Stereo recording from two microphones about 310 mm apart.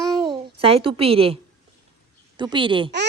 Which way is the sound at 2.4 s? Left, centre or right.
Centre.